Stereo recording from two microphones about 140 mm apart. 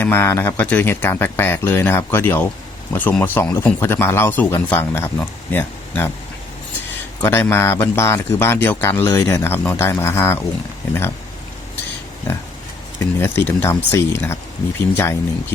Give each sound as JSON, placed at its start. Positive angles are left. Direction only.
{"t": 0.0, "sound": "speech", "side_deg": 15}
{"t": 7.2, "sound": "speech", "side_deg": 15}
{"t": 13.0, "sound": "speech", "side_deg": 15}